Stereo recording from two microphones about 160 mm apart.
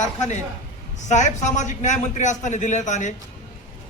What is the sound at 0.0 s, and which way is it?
A man's voice, 45° left (ahead or behind).